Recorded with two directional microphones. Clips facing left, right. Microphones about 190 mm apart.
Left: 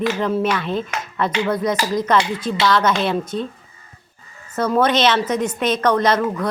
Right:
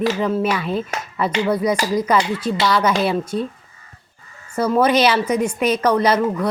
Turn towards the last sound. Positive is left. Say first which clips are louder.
# right 1 dB
turn(degrees=-10)  # may be behind; listen again after turning